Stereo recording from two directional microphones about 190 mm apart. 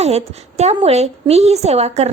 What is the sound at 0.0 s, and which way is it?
A woman's voice, 35° right (ahead or behind).